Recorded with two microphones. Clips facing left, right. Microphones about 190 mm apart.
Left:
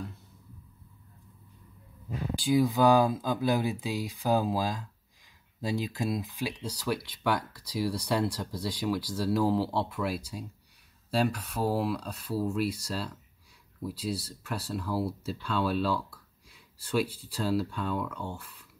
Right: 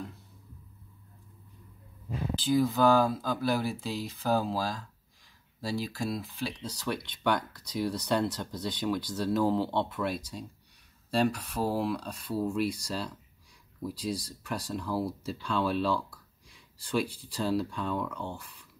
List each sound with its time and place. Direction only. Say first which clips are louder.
2.3 s speech: left 1 dB; 15° left (ahead or behind)